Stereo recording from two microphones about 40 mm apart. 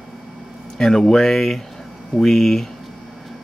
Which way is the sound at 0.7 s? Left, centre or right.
Centre.